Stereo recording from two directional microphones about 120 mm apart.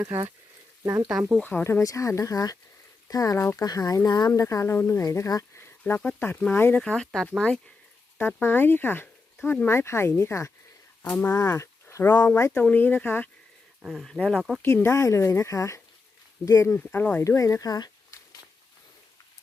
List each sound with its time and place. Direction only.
1.4 s speech: 15° left (ahead or behind)
1.8 s speech: 25° left (ahead or behind)
5.8 s speech: 10° left (ahead or behind)
8.4 s speech: 20° left (ahead or behind)
13.8 s speech: centre (ahead or behind)
14.6 s speech: 20° left (ahead or behind)
16.8 s speech: 15° left (ahead or behind); by 18.3 s 35° left (ahead or behind)